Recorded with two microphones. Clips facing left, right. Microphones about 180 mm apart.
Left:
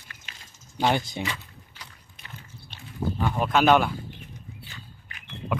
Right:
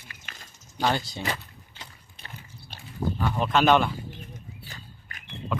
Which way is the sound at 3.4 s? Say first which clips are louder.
Left 1 dB; 5° left (ahead or behind).